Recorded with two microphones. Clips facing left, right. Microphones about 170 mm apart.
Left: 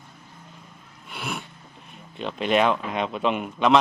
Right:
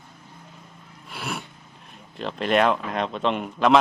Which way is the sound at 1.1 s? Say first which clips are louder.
Even; centre (ahead or behind).